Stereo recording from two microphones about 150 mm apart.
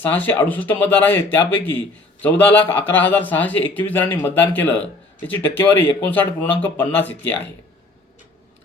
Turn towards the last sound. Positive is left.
turn(degrees=15)  # may be behind; listen again after turning